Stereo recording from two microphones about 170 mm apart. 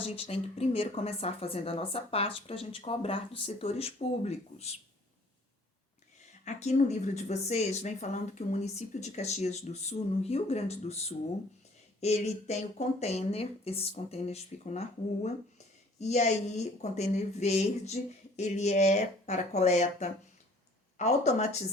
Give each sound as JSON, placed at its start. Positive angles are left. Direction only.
{"t": 0.0, "sound": "speech", "side_deg": 35}
{"t": 6.4, "sound": "speech", "side_deg": 40}